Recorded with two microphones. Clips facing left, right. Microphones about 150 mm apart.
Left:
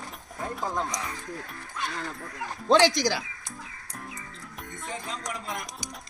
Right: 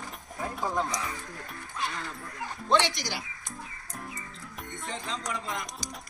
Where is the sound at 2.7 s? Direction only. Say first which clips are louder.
Left 6 dB; 90° left.